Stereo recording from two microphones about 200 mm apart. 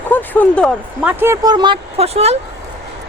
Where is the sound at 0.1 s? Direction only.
10° left (ahead or behind).